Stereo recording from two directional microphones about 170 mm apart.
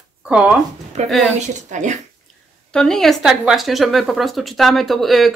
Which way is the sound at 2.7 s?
5° left (ahead or behind).